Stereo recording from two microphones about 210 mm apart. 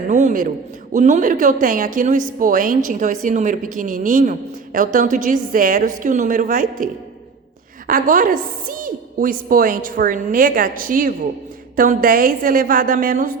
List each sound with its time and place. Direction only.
0.1 s a man's voice: 35° right (ahead or behind)
7.9 s a woman's voice: 40° right (ahead or behind)